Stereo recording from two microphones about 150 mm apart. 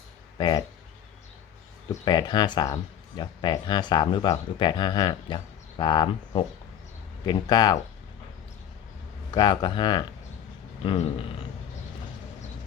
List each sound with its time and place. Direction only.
0.3 s speech: 30° left (ahead or behind)
1.9 s speech: 30° left (ahead or behind)
9.3 s speech: 30° left (ahead or behind)